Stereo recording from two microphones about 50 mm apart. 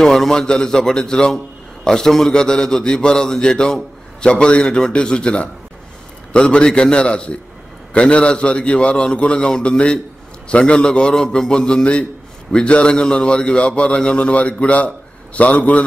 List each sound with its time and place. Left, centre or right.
0.0 s a man's voice: centre; by 15.8 s left